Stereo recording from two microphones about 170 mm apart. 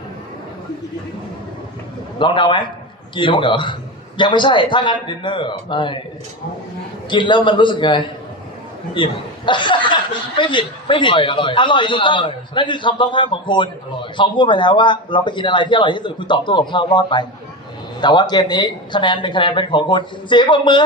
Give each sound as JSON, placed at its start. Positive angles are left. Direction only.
{"t": 2.1, "sound": "speech", "side_deg": 30}
{"t": 7.1, "sound": "speech", "side_deg": 30}